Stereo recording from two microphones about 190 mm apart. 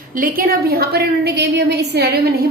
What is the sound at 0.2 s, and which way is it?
A woman's voice, 50° right (ahead or behind).